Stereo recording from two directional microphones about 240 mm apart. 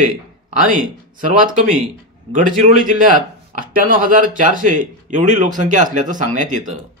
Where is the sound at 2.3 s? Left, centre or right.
Right.